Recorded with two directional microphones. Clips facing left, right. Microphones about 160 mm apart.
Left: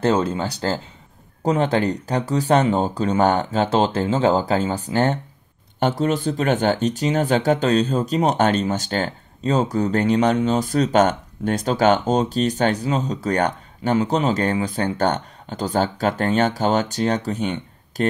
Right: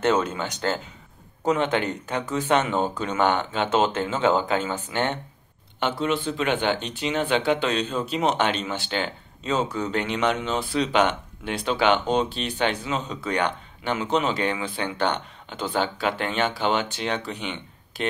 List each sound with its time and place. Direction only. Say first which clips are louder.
0.0 s speech: left 3 dB; 30° left (ahead or behind)